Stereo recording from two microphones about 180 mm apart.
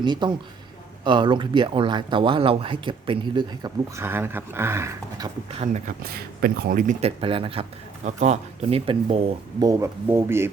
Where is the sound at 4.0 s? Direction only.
15° right (ahead or behind).